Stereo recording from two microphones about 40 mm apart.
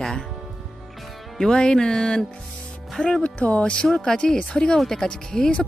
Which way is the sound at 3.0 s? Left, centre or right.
Left.